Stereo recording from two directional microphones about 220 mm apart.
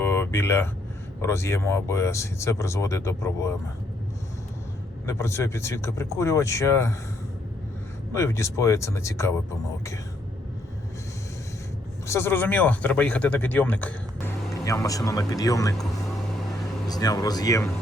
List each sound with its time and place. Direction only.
0.0 s a sound: 10° left (ahead or behind)
1.2 s speech: 10° left (ahead or behind)
5.0 s speech: 10° left (ahead or behind)
8.1 s speech: 10° left (ahead or behind)
12.0 s speech: 10° left (ahead or behind)